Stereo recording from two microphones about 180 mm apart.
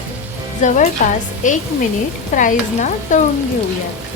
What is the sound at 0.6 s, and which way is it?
Speech, 45° left (ahead or behind).